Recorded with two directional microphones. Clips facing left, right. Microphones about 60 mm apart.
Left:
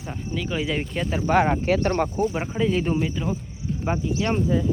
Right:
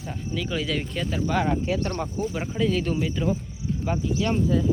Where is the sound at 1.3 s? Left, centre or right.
Left.